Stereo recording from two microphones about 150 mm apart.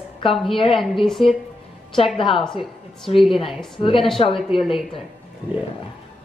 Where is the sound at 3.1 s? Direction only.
40° left (ahead or behind).